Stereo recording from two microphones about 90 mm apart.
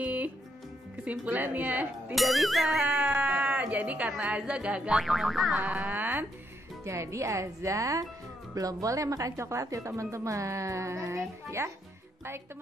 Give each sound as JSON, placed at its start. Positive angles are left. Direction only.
{"t": 0.0, "sound": "music", "side_deg": -15}
{"t": 1.0, "sound": "speech", "side_deg": -15}
{"t": 2.1, "sound": "music", "side_deg": 0}
{"t": 3.0, "sound": "speech", "side_deg": -15}
{"t": 5.0, "sound": "music", "side_deg": 0}
{"t": 5.5, "sound": "speech", "side_deg": -15}
{"t": 6.8, "sound": "speech", "side_deg": -35}